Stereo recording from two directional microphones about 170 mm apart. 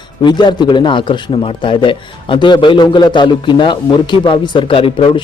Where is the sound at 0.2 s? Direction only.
25° left (ahead or behind).